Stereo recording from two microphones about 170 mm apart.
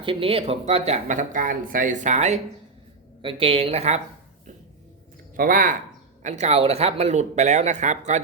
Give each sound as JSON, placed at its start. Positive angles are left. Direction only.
{"t": 0.0, "sound": "speech", "side_deg": -30}
{"t": 3.2, "sound": "a woman's voice", "side_deg": -30}
{"t": 5.3, "sound": "speech", "side_deg": -55}
{"t": 6.2, "sound": "speech", "side_deg": -40}